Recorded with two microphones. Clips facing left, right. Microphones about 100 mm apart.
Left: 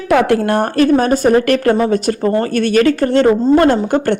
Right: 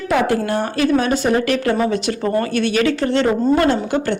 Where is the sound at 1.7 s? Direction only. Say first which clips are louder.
Left 4 dB; 40° left (ahead or behind).